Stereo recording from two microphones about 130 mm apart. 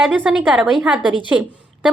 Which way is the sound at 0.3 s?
5° right (ahead or behind).